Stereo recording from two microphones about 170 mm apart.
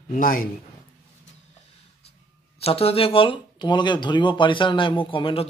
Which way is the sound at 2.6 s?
35° left (ahead or behind).